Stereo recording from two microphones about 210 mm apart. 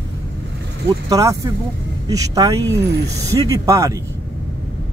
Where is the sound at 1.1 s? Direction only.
15° right (ahead or behind).